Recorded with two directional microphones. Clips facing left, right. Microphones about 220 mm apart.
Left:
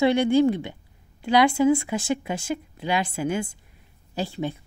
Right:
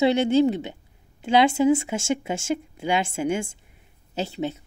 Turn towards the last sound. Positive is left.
turn(degrees=-20)  # may be behind; listen again after turning